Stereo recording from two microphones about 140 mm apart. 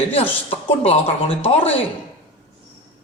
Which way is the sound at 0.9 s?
45° left (ahead or behind).